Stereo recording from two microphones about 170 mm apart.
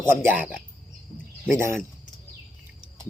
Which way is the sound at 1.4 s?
15° right (ahead or behind).